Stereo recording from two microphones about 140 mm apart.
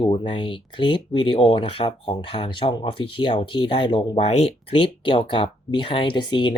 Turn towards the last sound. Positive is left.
turn(degrees=35)  # may be behind; listen again after turning